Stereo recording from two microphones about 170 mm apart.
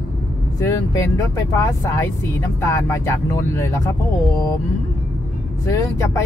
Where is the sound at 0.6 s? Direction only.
15° left (ahead or behind).